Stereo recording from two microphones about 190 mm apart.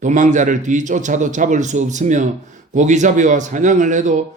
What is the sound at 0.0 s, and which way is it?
A man's voice, 40° right (ahead or behind).